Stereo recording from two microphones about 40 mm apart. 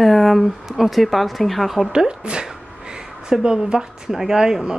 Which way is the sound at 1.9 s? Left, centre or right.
Right.